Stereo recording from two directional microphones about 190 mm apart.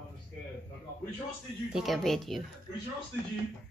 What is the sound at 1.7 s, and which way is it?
Speech, centre (ahead or behind).